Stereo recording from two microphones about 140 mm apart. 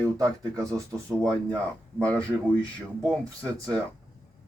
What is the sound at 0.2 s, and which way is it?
Speech, 25° right (ahead or behind).